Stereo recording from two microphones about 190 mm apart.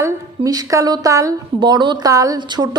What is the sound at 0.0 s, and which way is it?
A woman's voice, 20° right (ahead or behind).